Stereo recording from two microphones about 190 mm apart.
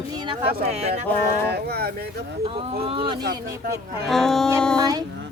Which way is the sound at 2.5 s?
30° right (ahead or behind).